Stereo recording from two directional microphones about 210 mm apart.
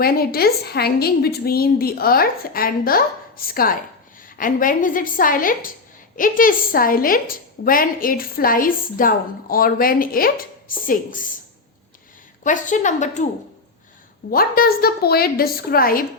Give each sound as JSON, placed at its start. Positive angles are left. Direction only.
{"t": 0.0, "sound": "a woman's voice", "side_deg": 45}
{"t": 12.4, "sound": "a woman's voice", "side_deg": 35}
{"t": 14.3, "sound": "a woman's voice", "side_deg": 45}